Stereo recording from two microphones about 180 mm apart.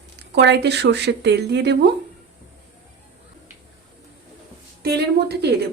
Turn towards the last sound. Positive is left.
turn(degrees=-65)  # may be behind; listen again after turning